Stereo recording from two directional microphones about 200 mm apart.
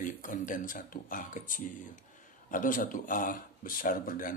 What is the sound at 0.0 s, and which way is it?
Speech, 40° left (ahead or behind).